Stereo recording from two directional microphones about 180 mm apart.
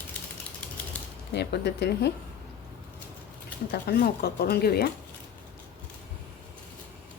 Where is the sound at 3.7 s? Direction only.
60° left (ahead or behind).